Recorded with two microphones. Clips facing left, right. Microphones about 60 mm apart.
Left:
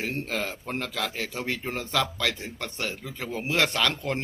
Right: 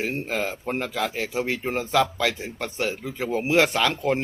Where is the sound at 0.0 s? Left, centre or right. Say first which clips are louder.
Right 3 dB; centre.